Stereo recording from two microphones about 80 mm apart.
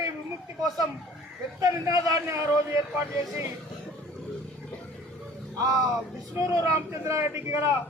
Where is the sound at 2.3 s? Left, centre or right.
Right.